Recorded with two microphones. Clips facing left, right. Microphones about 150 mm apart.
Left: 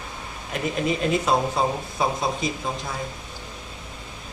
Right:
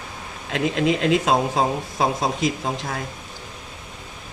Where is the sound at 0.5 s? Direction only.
90° right.